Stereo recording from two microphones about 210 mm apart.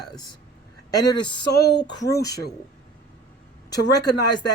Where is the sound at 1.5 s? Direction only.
50° left (ahead or behind).